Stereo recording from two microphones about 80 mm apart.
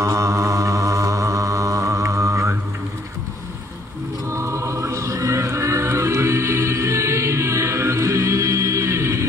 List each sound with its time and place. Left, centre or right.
0.0 s mantra: right
4.3 s music: right